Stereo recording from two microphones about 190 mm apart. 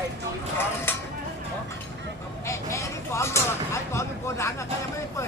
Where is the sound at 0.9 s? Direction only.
10° left (ahead or behind).